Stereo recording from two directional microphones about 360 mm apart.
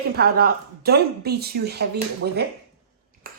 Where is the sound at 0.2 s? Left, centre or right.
Right.